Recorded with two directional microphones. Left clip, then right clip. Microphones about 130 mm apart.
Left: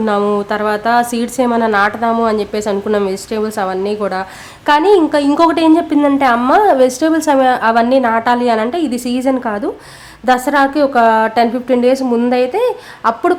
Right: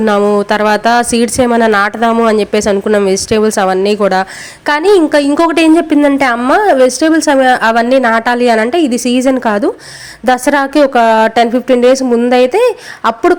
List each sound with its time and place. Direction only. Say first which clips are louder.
0.3 s a woman's voice: right 6 dB; 30° right (ahead or behind)